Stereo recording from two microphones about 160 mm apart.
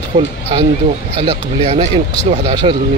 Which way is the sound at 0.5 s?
30° right (ahead or behind).